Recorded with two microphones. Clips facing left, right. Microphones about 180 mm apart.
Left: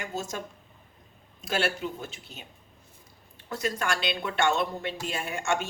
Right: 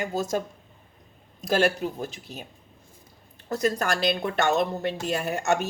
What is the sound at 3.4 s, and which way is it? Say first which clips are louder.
A woman's voice: right 5 dB; 40° right (ahead or behind).